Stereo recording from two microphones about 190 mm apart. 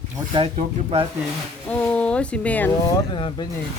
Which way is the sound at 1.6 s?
5° left (ahead or behind).